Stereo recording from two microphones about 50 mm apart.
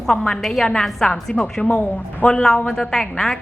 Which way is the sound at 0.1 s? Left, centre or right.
Centre.